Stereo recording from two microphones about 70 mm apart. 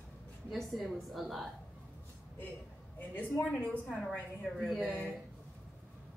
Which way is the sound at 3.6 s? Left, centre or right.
Centre.